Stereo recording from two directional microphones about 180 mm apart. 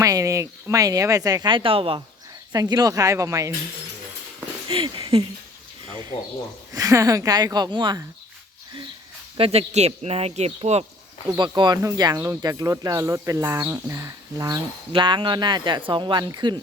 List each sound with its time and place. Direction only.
0.0 s speech: 20° right (ahead or behind)
4.7 s speech: 30° right (ahead or behind)
6.7 s speech: 20° right (ahead or behind)
9.4 s speech: 35° right (ahead or behind)
11.3 s speech: 25° right (ahead or behind)